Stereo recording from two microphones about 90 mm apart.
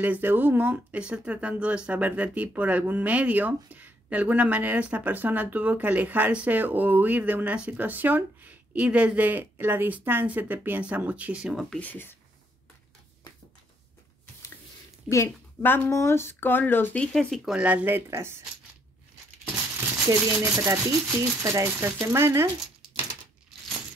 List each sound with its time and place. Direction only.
0.0 s speech: 20° right (ahead or behind)
11.8 s speech: 20° left (ahead or behind)
15.0 s speech: 30° left (ahead or behind)
17.0 s speech: 5° left (ahead or behind)
17.5 s speech: 15° right (ahead or behind)
20.1 s speech: 40° right (ahead or behind)